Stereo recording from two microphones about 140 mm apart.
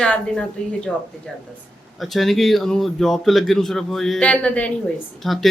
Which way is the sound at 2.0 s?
Centre (ahead or behind).